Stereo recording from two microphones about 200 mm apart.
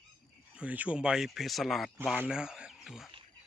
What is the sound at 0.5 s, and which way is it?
Speech, 5° right (ahead or behind).